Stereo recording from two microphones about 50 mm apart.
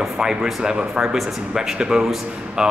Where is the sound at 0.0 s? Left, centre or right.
Centre.